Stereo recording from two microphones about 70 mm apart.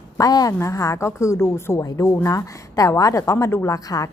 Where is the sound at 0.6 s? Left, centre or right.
Left.